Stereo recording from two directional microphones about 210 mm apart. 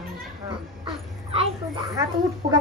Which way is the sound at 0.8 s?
30° right (ahead or behind).